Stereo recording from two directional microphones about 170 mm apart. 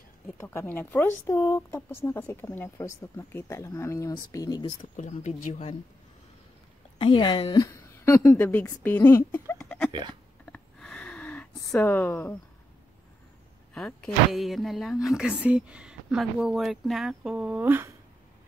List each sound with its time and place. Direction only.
0.4 s a woman's voice: 15° left (ahead or behind)
5.1 s speech: 40° left (ahead or behind)
7.0 s speech: 30° left (ahead or behind)
7.9 s a woman's voice: 15° left (ahead or behind)
10.4 s a sound: 5° left (ahead or behind)
13.7 s speech: 5° left (ahead or behind); by 17.9 s 10° right (ahead or behind)